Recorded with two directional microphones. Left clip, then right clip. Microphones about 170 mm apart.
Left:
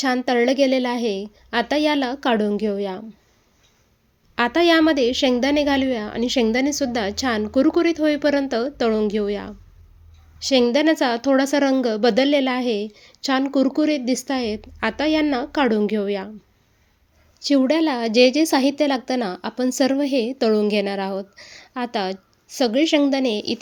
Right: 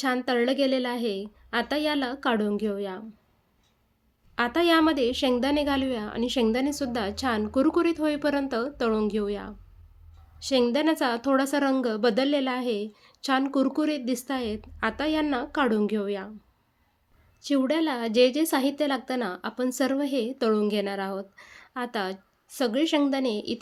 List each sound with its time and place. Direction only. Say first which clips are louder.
0.0 s a woman's voice: left 6 dB; 10° left (ahead or behind)
4.4 s a woman's voice: left 6 dB; 15° left (ahead or behind)
17.4 s a woman's voice: left 7 dB; 15° left (ahead or behind)